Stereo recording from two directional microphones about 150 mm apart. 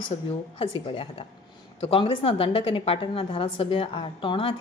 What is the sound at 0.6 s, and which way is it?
A woman's voice, 35° left (ahead or behind).